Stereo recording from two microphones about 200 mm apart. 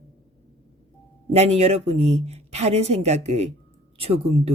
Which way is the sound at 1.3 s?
30° right (ahead or behind).